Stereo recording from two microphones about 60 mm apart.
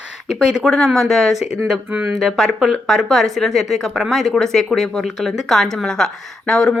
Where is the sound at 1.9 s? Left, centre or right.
Right.